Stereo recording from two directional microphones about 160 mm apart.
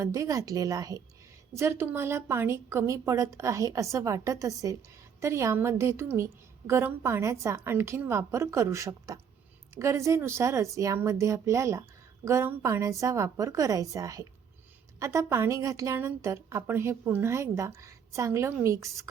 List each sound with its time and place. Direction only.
0.0 s a woman's voice: 20° right (ahead or behind)